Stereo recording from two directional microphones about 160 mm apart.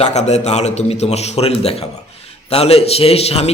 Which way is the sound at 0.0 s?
45° left (ahead or behind).